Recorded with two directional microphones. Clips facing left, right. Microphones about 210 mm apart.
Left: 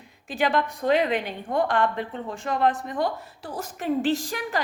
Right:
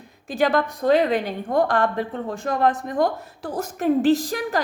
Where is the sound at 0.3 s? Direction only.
40° right (ahead or behind).